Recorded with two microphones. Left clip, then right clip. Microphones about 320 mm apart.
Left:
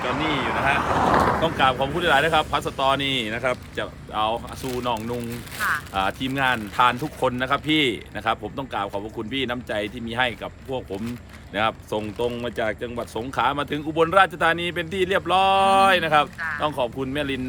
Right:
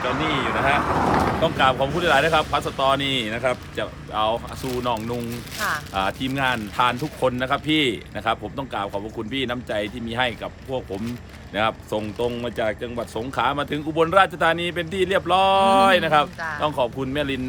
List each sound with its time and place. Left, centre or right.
0.1 s speech: left
1.4 s speech: centre